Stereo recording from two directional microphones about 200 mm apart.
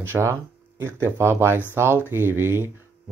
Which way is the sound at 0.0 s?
10° right (ahead or behind).